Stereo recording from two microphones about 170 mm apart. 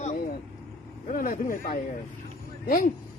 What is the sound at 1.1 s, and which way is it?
Speech, 55° left (ahead or behind).